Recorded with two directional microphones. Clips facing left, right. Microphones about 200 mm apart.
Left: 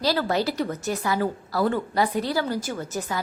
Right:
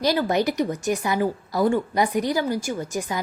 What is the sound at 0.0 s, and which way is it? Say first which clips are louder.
A woman's voice: right 2 dB; 15° right (ahead or behind).